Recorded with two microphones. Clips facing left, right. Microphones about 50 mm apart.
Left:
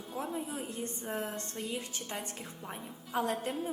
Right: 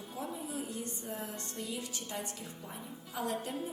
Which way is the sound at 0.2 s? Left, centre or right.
Left.